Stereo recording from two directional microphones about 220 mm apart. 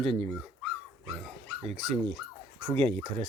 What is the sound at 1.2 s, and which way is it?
Dog, centre (ahead or behind).